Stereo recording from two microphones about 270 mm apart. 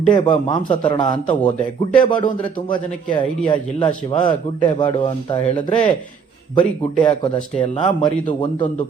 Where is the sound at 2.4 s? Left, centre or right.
Centre.